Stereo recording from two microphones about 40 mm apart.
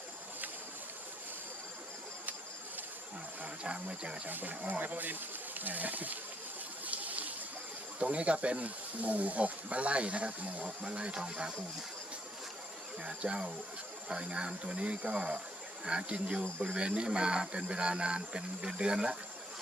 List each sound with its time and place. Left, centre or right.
3.4 s speech: right
4.3 s speech: right
6.8 s a sound: right
7.9 s speech: right
13.1 s speech: right